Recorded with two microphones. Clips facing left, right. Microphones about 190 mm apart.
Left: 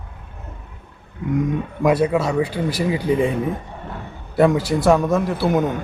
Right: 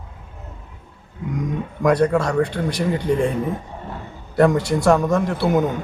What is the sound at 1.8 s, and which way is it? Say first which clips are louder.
Speech: right 1 dB; 5° left (ahead or behind).